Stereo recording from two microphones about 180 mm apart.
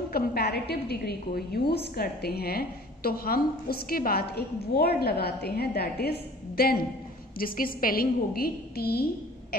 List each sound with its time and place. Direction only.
0.1 s a woman's voice: 60° left (ahead or behind)